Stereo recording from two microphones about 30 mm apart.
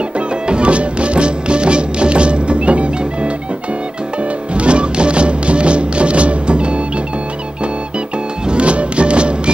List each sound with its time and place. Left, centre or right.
0.5 s music: right
4.6 s music: right
8.5 s music: right